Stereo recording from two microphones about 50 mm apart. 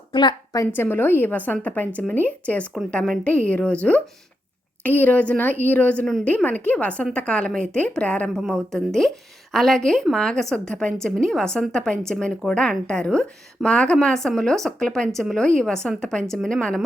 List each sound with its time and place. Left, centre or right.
0.7 s speech: left
2.9 s a woman's voice: centre
3.2 s a woman's voice: left
8.5 s a woman's voice: centre